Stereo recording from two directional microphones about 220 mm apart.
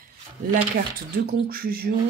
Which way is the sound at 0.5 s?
45° right (ahead or behind).